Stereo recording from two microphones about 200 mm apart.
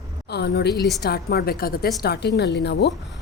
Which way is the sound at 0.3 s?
55° left (ahead or behind).